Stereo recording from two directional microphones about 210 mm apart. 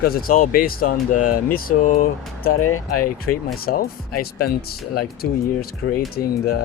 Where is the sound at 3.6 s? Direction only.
45° left (ahead or behind).